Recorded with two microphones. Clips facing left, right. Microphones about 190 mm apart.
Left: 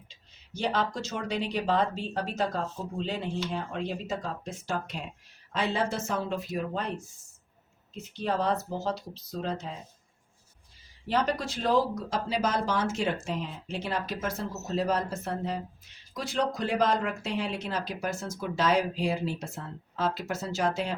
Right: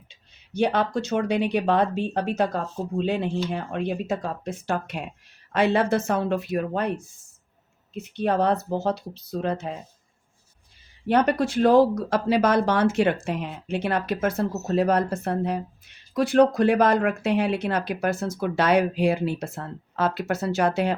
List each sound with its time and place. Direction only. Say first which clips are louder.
0.1 s speech: right 9 dB; 60° right (ahead or behind)
8.1 s speech: right 6 dB; 60° right (ahead or behind)
11.1 s speech: right 8 dB; 60° right (ahead or behind)